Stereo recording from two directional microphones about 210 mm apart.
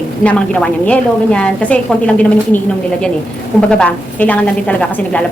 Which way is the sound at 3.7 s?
5° left (ahead or behind).